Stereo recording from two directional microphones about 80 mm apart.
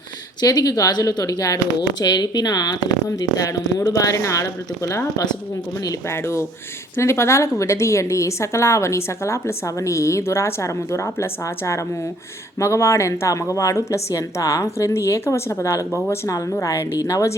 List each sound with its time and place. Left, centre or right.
0.4 s speech: left
2.0 s speech: left
3.2 s a woman's voice: left
16.3 s speech: left